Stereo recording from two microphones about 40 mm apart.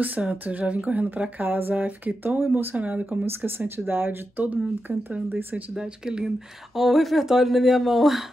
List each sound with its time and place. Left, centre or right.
0.2 s speech: right
1.4 s a sound: right
2.4 s speech: right
2.7 s speech: right
3.1 s speech: right
5.8 s speech: centre
6.7 s speech: centre